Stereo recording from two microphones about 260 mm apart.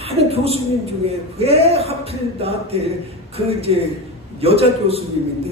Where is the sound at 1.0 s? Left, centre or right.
Right.